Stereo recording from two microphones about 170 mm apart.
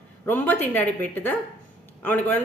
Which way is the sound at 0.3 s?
10° left (ahead or behind).